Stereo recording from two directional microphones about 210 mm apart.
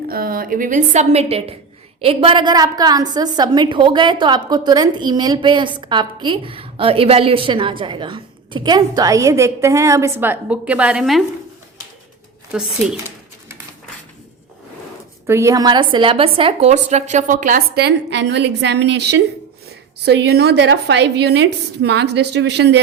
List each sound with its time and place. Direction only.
0.1 s a woman's voice: 45° right (ahead or behind); by 11.2 s centre (ahead or behind)
12.5 s a woman's voice: 5° right (ahead or behind)
15.3 s a woman's voice: 15° right (ahead or behind); by 22.8 s 55° right (ahead or behind)